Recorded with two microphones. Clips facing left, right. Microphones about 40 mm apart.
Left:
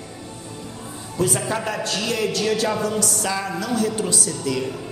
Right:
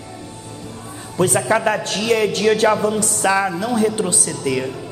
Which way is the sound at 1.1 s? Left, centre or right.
Right.